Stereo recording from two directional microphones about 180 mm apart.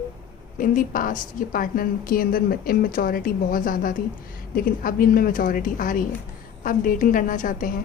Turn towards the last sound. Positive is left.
turn(degrees=45)  # may be behind; listen again after turning